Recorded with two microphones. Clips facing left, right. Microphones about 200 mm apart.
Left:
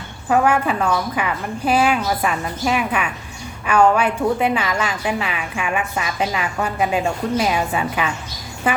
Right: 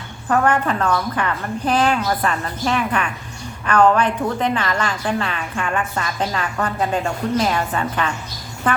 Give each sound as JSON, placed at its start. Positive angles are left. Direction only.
{"t": 0.3, "sound": "a woman's voice", "side_deg": 10}